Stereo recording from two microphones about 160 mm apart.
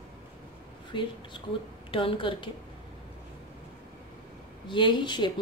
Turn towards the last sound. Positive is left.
turn(degrees=30)  # may be behind; listen again after turning